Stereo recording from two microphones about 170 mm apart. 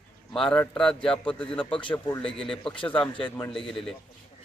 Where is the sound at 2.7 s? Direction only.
30° left (ahead or behind).